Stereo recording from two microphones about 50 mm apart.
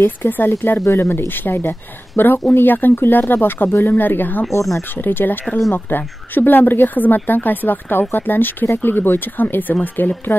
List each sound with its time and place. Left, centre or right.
0.0 s speech: left
0.5 s speech: left